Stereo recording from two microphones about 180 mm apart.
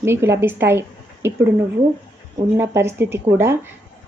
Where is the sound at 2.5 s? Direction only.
15° right (ahead or behind).